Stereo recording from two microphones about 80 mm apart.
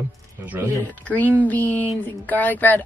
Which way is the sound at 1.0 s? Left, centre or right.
Centre.